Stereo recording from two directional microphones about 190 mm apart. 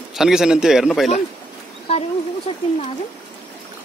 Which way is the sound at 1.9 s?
35° left (ahead or behind).